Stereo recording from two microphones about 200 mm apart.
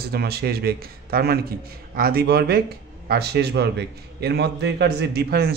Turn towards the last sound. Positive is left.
turn(degrees=-50)  # may be behind; listen again after turning